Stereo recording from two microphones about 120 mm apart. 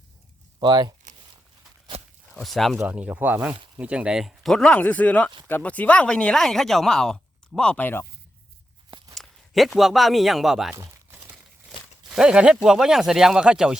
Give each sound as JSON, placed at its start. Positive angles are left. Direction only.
{"t": 0.6, "sound": "speech", "side_deg": -35}
{"t": 1.9, "sound": "a sound", "side_deg": -60}
{"t": 2.3, "sound": "speech", "side_deg": 0}
{"t": 2.7, "sound": "speech", "side_deg": -10}
{"t": 8.9, "sound": "a sound", "side_deg": -35}
{"t": 9.1, "sound": "a man's voice", "side_deg": 0}
{"t": 12.1, "sound": "speech", "side_deg": -5}